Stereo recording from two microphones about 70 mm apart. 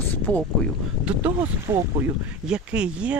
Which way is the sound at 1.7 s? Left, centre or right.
Right.